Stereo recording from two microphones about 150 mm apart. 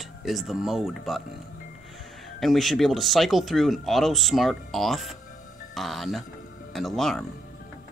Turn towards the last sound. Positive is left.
turn(degrees=0)  # may be behind; listen again after turning